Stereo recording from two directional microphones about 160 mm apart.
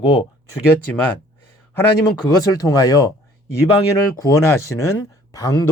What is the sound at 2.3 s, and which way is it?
Speech, 20° left (ahead or behind).